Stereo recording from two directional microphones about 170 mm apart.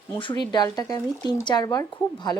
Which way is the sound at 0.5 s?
20° left (ahead or behind).